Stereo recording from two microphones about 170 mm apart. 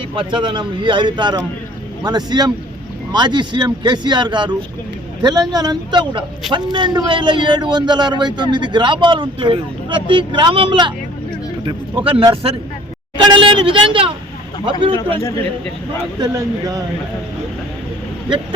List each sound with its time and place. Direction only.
0.2 s a man's voice: 30° right (ahead or behind)
16.3 s a man's voice: 20° right (ahead or behind)